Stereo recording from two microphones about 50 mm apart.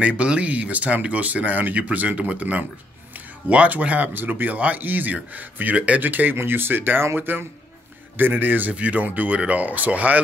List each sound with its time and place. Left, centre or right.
0.0 s speech: right